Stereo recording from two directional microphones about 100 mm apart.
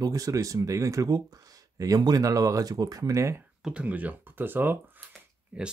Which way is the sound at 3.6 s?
10° right (ahead or behind).